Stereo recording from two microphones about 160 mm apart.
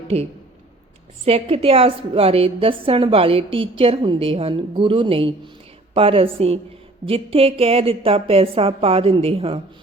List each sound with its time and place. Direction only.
1.2 s a woman's voice: 40° right (ahead or behind)